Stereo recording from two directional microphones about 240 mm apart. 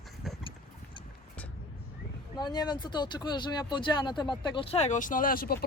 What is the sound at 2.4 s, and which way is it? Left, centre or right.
Speech, centre.